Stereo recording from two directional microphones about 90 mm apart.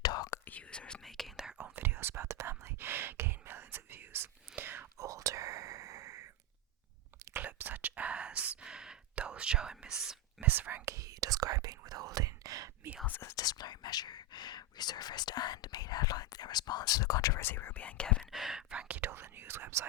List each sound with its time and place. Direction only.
0.0 s whispering: 50° left (ahead or behind)
0.4 s whispering: 15° left (ahead or behind)
1.5 s whispering: 20° right (ahead or behind)
4.9 s whispering: 40° right (ahead or behind)
7.3 s whispering: 20° right (ahead or behind); by 10.2 s 5° right (ahead or behind)
10.4 s whispering: 20° right (ahead or behind)
10.8 s whispering: 40° right (ahead or behind)
13.1 s whispering: 20° left (ahead or behind)
13.3 s whispering: 50° left (ahead or behind)
17.4 s speech: 25° left (ahead or behind)
18.3 s whispering: 5° right (ahead or behind); by 19.8 s 25° right (ahead or behind)